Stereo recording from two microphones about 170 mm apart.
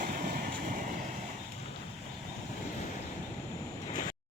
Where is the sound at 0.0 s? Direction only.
55° right (ahead or behind).